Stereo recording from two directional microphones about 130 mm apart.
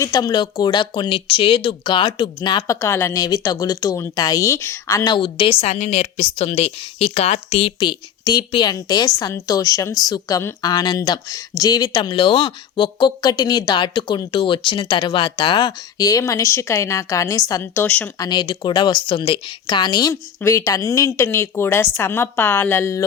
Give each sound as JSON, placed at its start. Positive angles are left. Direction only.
{"t": 0.0, "sound": "a woman's voice", "side_deg": 30}
{"t": 5.0, "sound": "a woman's voice", "side_deg": 40}
{"t": 18.2, "sound": "speech", "side_deg": 35}